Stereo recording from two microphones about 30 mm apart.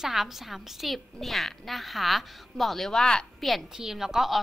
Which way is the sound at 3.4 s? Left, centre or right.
Centre.